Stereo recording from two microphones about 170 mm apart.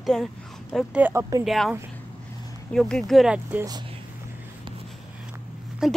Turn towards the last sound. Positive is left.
turn(degrees=-5)  # may be behind; listen again after turning